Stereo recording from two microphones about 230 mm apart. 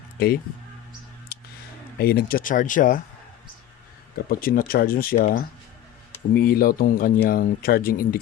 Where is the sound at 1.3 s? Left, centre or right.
Left.